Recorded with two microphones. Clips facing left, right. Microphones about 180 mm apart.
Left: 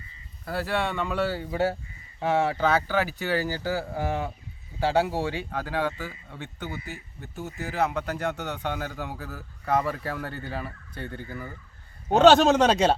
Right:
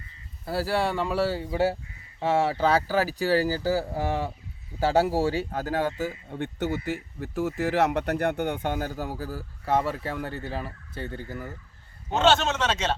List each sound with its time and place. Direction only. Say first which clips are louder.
0.4 s speech: right 2 dB; 30° right (ahead or behind)
6.8 s speech: right 9 dB; 90° right; by 11.2 s 25° right (ahead or behind)
11.2 s speech: right 1 dB; 5° right (ahead or behind)
12.0 s a man's voice: left 6 dB; 40° left (ahead or behind)